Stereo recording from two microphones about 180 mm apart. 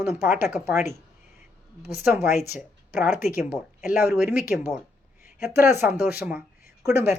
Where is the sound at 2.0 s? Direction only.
10° right (ahead or behind).